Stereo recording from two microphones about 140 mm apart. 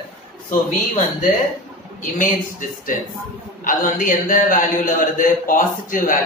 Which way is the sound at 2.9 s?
75° left (ahead or behind).